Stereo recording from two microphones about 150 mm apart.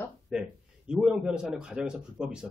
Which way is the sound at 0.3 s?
5° right (ahead or behind).